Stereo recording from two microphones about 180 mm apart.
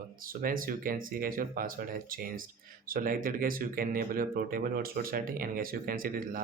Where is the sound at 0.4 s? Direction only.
50° right (ahead or behind).